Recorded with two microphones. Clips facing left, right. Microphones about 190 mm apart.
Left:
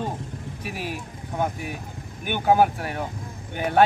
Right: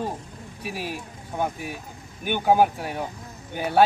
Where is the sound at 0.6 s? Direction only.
40° right (ahead or behind).